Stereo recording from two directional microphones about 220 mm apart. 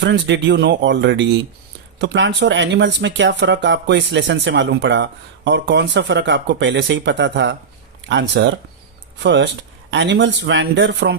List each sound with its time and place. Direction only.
0.0 s speech: 55° right (ahead or behind)